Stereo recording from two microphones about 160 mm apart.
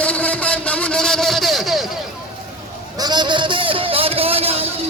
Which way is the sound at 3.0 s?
25° right (ahead or behind).